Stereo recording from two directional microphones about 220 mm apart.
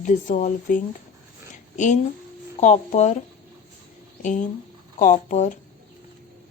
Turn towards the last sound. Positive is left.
turn(degrees=35)  # may be behind; listen again after turning